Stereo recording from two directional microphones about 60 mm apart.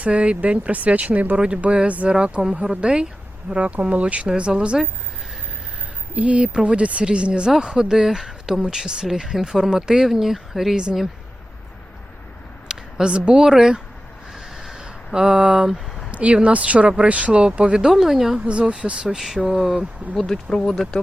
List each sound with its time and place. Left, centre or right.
0.0 s speech: centre
6.1 s speech: right; by 10.8 s centre
12.6 s speech: centre
14.3 s a sound: centre
16.1 s a woman's voice: right
18.4 s speech: centre
20.1 s speech: centre